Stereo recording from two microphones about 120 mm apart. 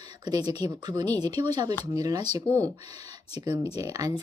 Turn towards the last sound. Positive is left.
turn(degrees=-30)  # may be behind; listen again after turning